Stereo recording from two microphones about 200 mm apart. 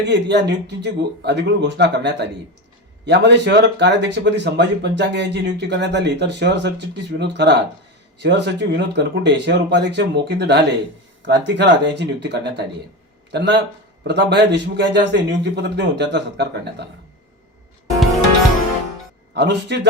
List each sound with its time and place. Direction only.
0.0 s speech: 60° right (ahead or behind)
19.3 s speech: 55° right (ahead or behind)